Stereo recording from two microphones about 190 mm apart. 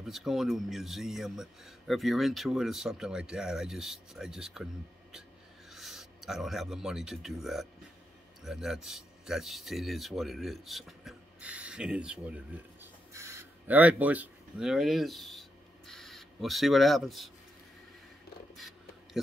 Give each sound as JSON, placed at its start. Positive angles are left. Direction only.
{"t": 0.0, "sound": "speech", "side_deg": 0}
{"t": 5.7, "sound": "speech", "side_deg": 0}
{"t": 12.8, "sound": "a sound", "side_deg": -15}
{"t": 15.9, "sound": "speech", "side_deg": 0}